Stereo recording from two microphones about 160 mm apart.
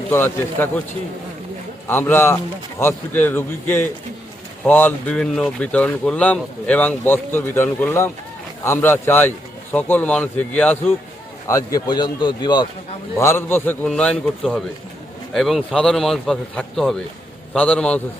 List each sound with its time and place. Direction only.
0.1 s speech: 15° left (ahead or behind)
1.9 s speech: 15° left (ahead or behind)
11.4 s a man's voice: 20° left (ahead or behind)
13.1 s a man's voice: 15° left (ahead or behind)